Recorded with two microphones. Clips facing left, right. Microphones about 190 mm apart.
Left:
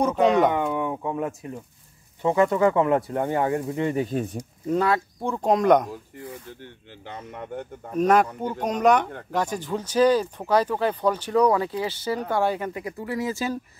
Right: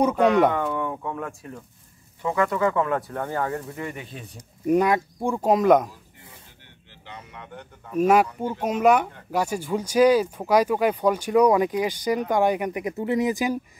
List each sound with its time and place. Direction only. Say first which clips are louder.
0.5 s speech: left 1 dB; 15° left (ahead or behind)
3.9 s speech: left 13 dB; 45° left (ahead or behind)
4.6 s speech: right 3 dB; 15° right (ahead or behind)
7.1 s speech: left 6 dB; 45° left (ahead or behind)
8.0 s speech: right 1 dB; 10° right (ahead or behind)